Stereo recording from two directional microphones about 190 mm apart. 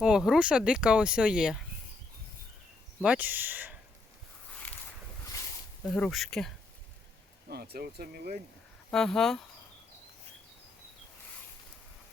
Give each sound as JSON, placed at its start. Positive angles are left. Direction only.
{"t": 0.0, "sound": "speech", "side_deg": -5}
{"t": 3.0, "sound": "speech", "side_deg": -5}
{"t": 5.3, "sound": "a sound", "side_deg": 20}
{"t": 5.8, "sound": "speech", "side_deg": 5}
{"t": 7.5, "sound": "speech", "side_deg": -55}
{"t": 8.9, "sound": "speech", "side_deg": 5}